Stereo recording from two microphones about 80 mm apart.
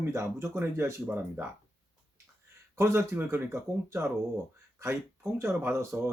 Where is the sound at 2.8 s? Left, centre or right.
Right.